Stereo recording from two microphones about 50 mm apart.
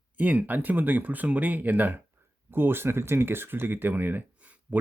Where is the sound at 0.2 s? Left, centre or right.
Right.